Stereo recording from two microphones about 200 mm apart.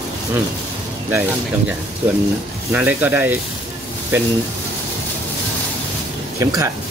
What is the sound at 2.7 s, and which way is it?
Speech, 10° right (ahead or behind).